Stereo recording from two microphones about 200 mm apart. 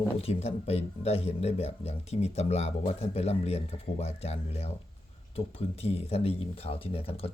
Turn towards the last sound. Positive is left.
turn(degrees=30)  # may be behind; listen again after turning